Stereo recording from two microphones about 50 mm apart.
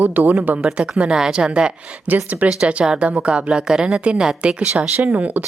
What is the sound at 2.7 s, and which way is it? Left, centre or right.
A woman's voice, right.